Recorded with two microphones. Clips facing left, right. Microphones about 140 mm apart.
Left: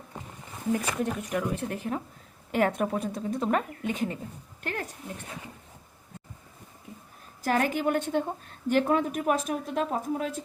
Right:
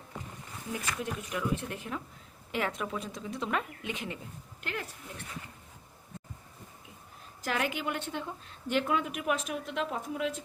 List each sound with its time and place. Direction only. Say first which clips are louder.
1.0 s a woman's voice: left 5 dB; 40° left (ahead or behind)
7.4 s a woman's voice: left 7 dB; 45° left (ahead or behind)